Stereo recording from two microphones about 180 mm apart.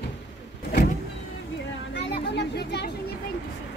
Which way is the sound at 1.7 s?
75° left (ahead or behind).